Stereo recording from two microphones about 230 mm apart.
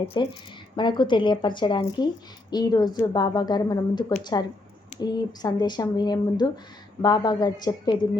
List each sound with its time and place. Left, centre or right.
0.0 s a woman's voice: left